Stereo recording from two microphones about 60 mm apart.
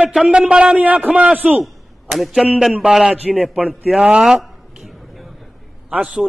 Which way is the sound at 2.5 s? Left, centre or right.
Centre.